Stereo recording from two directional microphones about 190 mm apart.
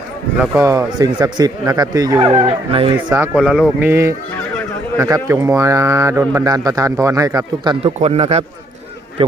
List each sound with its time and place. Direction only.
0.3 s speech: 10° right (ahead or behind)
2.2 s speech: 30° right (ahead or behind)
3.3 s speech: centre (ahead or behind); by 8.4 s 35° right (ahead or behind)